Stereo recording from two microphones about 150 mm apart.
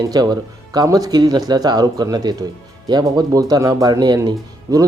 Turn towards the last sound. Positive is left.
turn(degrees=-25)  # may be behind; listen again after turning